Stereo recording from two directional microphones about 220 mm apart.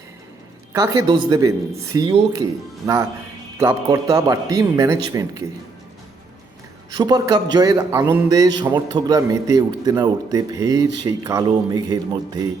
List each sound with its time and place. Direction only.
0.7 s a man's voice: 15° right (ahead or behind)
6.9 s a man's voice: 20° right (ahead or behind)